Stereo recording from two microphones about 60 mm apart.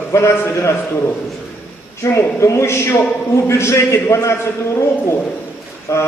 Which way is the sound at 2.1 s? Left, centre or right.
Left.